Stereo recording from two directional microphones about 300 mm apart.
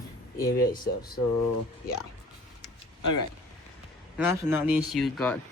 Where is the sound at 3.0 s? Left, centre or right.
Left.